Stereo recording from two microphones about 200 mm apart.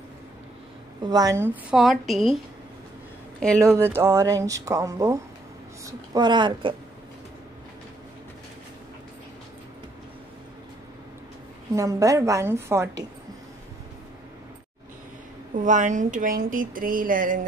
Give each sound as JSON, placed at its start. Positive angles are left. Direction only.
{"t": 1.0, "sound": "a woman's voice", "side_deg": -20}
{"t": 3.5, "sound": "a woman's voice", "side_deg": -15}
{"t": 11.7, "sound": "speech", "side_deg": -15}
{"t": 15.6, "sound": "speech", "side_deg": -40}